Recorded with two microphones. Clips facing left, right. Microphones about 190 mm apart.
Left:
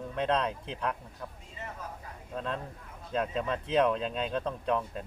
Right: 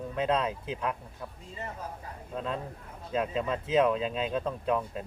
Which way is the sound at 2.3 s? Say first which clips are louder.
Right 1 dB; 5° right (ahead or behind).